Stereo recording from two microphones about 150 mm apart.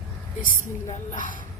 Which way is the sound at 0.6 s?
60° left (ahead or behind).